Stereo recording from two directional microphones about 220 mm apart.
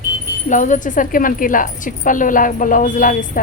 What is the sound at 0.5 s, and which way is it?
Speech, 35° left (ahead or behind).